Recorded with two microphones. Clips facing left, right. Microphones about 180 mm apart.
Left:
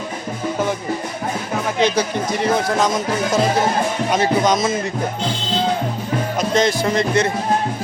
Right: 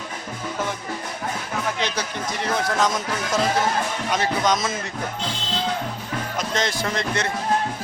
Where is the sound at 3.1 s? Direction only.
20° left (ahead or behind).